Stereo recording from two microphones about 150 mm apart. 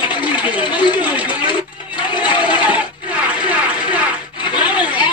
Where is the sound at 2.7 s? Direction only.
10° right (ahead or behind).